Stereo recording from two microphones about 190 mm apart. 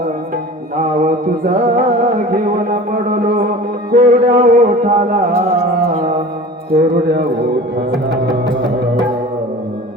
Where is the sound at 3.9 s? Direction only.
50° right (ahead or behind).